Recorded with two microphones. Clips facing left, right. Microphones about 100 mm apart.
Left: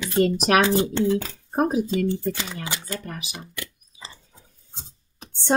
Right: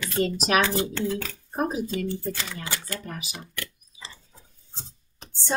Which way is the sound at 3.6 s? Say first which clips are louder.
Left 1 dB; 15° left (ahead or behind).